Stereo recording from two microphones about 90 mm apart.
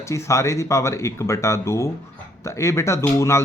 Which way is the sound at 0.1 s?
35° left (ahead or behind).